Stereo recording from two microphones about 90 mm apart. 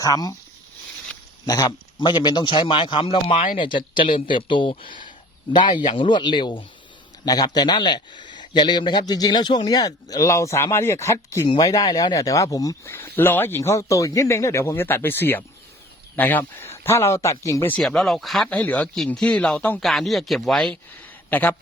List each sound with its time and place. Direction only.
0.0 s a man's voice: 40° left (ahead or behind)
1.5 s a man's voice: 45° left (ahead or behind)
2.0 s a man's voice: 60° left (ahead or behind)
7.3 s a man's voice: 50° left (ahead or behind); by 11.4 s 30° left (ahead or behind)
11.4 s a man's voice: 50° left (ahead or behind)
12.9 s a man's voice: 25° left (ahead or behind)
17.8 s speech: 5° left (ahead or behind)
18.4 s speech: 15° left (ahead or behind)
19.8 s speech: centre (ahead or behind)
21.2 s speech: 20° left (ahead or behind)